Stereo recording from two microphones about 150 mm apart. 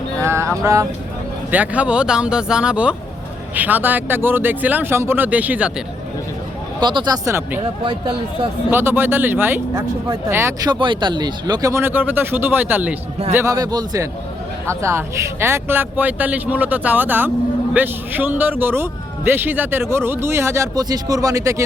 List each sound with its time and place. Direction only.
0.3 s music: 20° right (ahead or behind)
1.5 s speech: 10° right (ahead or behind)
6.7 s speech: 30° right (ahead or behind)
7.9 s speech: 35° right (ahead or behind)
8.7 s speech: 15° right (ahead or behind)
10.7 s speech: 30° right (ahead or behind)